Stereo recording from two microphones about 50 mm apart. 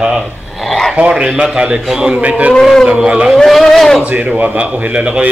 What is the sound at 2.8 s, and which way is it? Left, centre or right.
Speech, right.